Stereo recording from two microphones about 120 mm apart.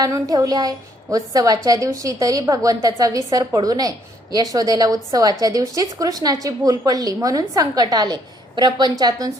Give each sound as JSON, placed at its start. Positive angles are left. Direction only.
{"t": 0.0, "sound": "a woman's voice", "side_deg": -30}